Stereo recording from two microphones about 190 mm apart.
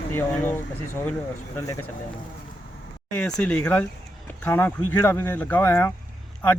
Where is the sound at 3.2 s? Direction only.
5° left (ahead or behind).